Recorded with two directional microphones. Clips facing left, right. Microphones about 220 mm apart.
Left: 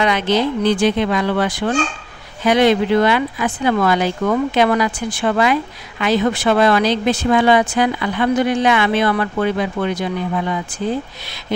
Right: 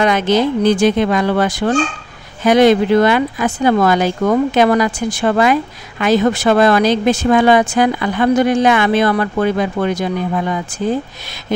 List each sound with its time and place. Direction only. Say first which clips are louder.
0.0 s speech: right 3 dB; 45° right (ahead or behind)